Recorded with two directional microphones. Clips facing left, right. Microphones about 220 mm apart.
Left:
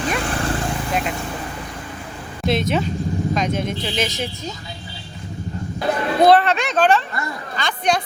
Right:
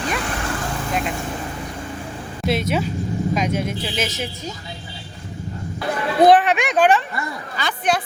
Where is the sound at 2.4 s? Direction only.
10° right (ahead or behind).